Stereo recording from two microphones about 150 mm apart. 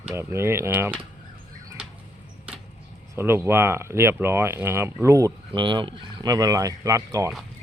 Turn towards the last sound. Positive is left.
turn(degrees=-20)  # may be behind; listen again after turning